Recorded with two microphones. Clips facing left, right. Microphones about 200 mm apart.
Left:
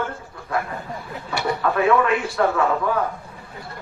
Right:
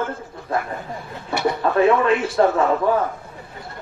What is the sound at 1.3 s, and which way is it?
A man's voice, 25° right (ahead or behind).